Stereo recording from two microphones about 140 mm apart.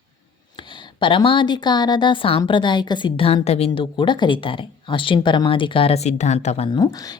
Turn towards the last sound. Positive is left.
turn(degrees=25)  # may be behind; listen again after turning